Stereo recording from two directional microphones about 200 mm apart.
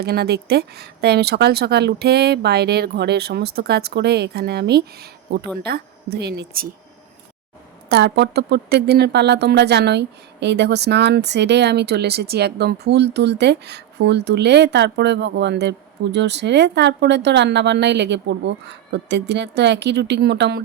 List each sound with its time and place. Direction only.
0.0 s speech: 55° right (ahead or behind)
7.9 s speech: 55° right (ahead or behind)